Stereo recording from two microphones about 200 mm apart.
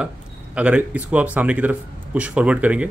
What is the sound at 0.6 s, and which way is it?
Speech, 5° right (ahead or behind).